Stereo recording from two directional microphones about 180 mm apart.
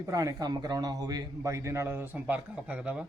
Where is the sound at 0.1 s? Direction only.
20° right (ahead or behind).